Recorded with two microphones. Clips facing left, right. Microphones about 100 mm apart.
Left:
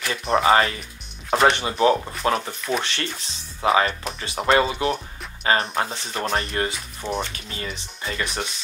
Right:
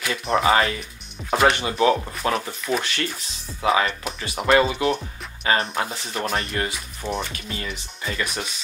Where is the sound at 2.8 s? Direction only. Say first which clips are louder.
Right 1 dB; 30° left (ahead or behind).